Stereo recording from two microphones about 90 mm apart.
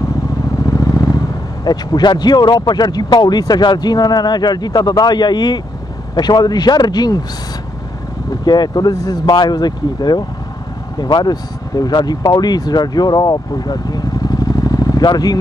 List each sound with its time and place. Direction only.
0.8 s speech: 45° left (ahead or behind)
8.5 s speech: 50° left (ahead or behind)